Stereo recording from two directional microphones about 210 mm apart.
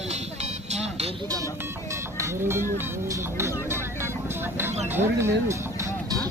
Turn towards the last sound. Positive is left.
turn(degrees=-15)  # may be behind; listen again after turning